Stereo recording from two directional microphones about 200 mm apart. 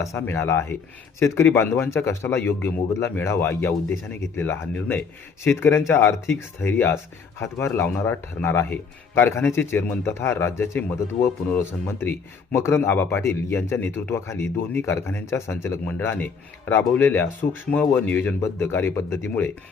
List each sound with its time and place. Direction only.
0.0 s speech: 15° left (ahead or behind)